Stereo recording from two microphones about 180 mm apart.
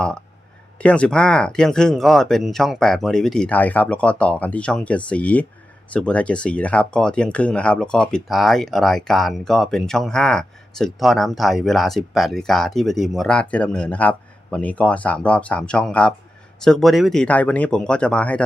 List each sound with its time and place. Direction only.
0.8 s speech: 5° left (ahead or behind)